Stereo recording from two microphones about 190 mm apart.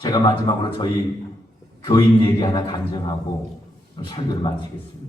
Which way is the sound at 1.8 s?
20° left (ahead or behind).